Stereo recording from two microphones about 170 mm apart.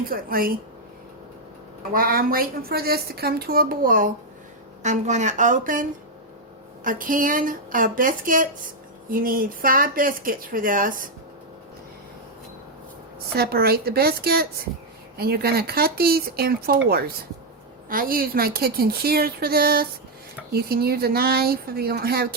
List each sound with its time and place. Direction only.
0.0 s a woman's voice: 60° right (ahead or behind)
1.9 s a woman's voice: 60° right (ahead or behind)
4.8 s a woman's voice: 45° right (ahead or behind)
13.3 s a woman's voice: 65° right (ahead or behind)